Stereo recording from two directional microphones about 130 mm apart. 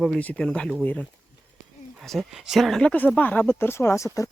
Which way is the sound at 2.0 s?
Centre (ahead or behind).